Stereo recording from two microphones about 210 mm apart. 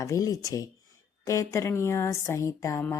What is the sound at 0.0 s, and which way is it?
A woman's voice, 15° left (ahead or behind).